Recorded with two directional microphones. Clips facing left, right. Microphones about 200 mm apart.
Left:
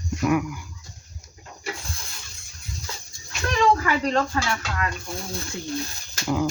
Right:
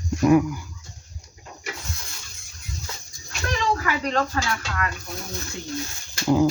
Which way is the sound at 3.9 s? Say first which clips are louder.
Left 2 dB; 30° left (ahead or behind).